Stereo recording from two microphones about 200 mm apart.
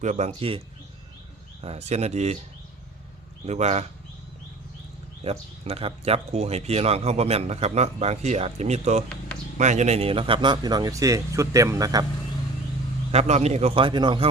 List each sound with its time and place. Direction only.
0.0 s speech: 35° right (ahead or behind)
1.6 s speech: 30° right (ahead or behind)
3.4 s speech: 35° right (ahead or behind)
5.2 s speech: 30° right (ahead or behind)
13.1 s speech: 30° right (ahead or behind)